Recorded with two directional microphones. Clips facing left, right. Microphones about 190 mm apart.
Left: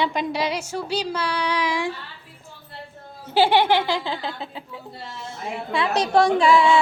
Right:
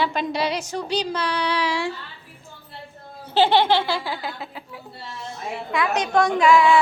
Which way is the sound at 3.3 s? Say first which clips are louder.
Even; 10° left (ahead or behind).